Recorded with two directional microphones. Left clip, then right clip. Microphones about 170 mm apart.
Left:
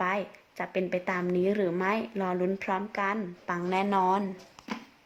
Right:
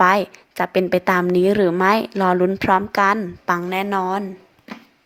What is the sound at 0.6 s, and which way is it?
A woman's voice, 30° right (ahead or behind).